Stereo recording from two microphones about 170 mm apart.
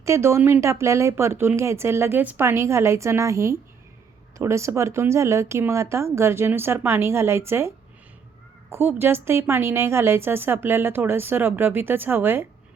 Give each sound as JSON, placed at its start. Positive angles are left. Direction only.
{"t": 0.0, "sound": "a woman's voice", "side_deg": -15}
{"t": 8.7, "sound": "a woman's voice", "side_deg": -10}